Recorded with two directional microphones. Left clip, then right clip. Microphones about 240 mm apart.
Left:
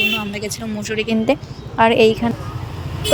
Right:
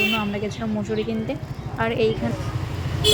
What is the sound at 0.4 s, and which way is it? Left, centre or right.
Speech, left.